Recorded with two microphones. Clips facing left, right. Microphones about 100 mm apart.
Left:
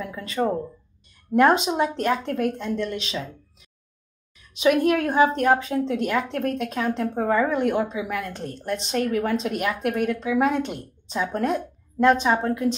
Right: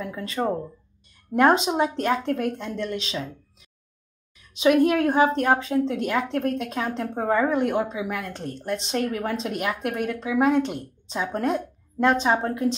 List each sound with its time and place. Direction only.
0.1 s a woman's voice: 30° right (ahead or behind)
4.6 s a woman's voice: 30° right (ahead or behind)